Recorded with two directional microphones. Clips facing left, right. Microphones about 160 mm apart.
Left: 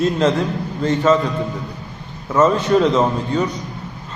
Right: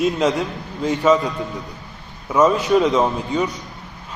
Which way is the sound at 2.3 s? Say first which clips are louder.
Left 1 dB; 10° right (ahead or behind).